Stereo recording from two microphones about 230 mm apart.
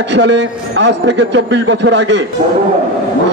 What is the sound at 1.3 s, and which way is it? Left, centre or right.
Speech, right.